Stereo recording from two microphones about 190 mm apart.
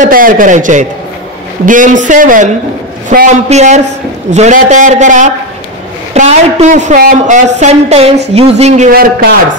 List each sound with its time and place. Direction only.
0.0 s a man's voice: 45° right (ahead or behind)